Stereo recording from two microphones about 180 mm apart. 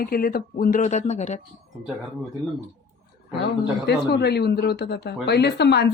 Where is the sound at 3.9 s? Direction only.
65° left (ahead or behind).